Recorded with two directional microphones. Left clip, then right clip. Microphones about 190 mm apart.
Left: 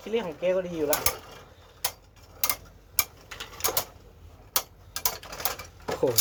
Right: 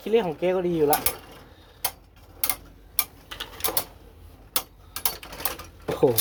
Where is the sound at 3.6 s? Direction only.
Centre (ahead or behind).